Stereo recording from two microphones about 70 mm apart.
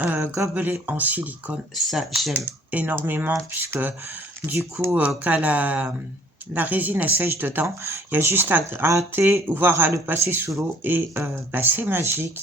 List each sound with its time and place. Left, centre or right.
0.0 s speech: right
1.7 s speech: centre
2.3 s speech: right
4.9 s speech: right
7.8 s speech: right